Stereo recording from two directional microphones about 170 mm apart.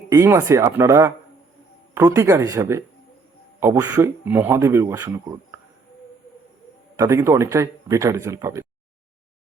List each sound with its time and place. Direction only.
0.1 s speech: 15° right (ahead or behind)
6.9 s speech: 15° right (ahead or behind)